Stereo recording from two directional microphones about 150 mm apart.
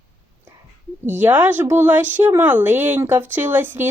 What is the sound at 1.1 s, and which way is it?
A woman's voice, 10° right (ahead or behind).